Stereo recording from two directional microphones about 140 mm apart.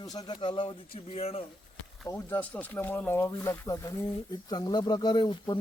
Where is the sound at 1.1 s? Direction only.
45° left (ahead or behind).